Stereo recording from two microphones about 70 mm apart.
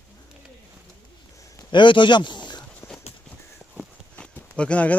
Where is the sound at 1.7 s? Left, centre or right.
Left.